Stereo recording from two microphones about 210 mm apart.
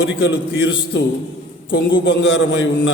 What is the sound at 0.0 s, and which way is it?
A man's voice, 65° left (ahead or behind).